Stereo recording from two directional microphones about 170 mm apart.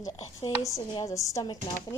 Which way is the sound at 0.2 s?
35° left (ahead or behind).